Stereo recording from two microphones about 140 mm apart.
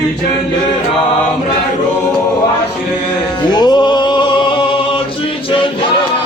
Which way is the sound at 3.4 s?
30° left (ahead or behind).